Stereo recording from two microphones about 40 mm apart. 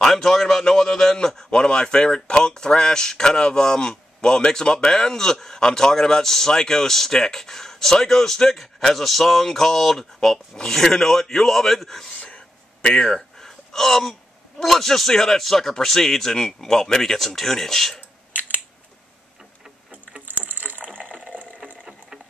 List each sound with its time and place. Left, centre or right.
0.0 s speech: centre
12.8 s speech: left
13.1 s gasp: centre
14.6 s speech: centre
19.9 s boat: right
20.2 s a sound: right
21.0 s water: right